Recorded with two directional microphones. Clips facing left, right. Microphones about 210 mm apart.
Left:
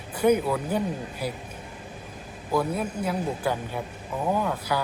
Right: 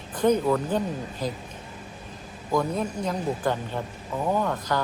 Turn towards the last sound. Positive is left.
turn(degrees=10)  # may be behind; listen again after turning